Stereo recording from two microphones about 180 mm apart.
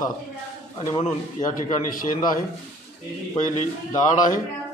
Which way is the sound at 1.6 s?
50° left (ahead or behind).